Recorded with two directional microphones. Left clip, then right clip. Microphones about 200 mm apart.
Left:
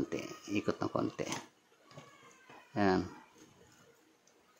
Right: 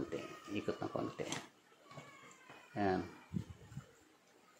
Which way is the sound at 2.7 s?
25° left (ahead or behind).